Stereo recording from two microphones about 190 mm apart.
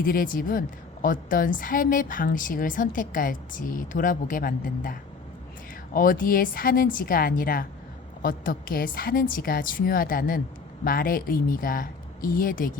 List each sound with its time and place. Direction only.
0.0 s a woman's voice: 50° left (ahead or behind)